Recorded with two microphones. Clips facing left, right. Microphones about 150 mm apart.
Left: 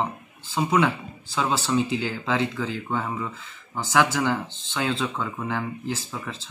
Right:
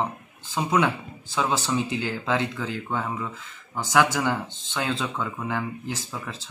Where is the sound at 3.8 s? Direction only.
15° right (ahead or behind).